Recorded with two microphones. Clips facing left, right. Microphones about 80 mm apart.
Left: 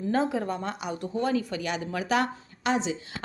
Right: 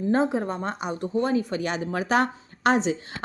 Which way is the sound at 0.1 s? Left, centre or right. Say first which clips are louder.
Right 3 dB; right.